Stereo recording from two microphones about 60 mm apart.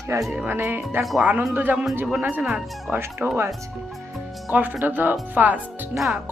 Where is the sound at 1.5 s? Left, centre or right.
Right.